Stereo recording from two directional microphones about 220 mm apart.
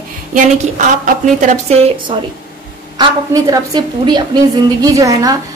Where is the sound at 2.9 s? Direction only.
15° right (ahead or behind).